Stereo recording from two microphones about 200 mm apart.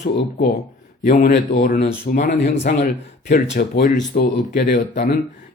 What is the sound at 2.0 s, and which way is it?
Speech, 40° left (ahead or behind).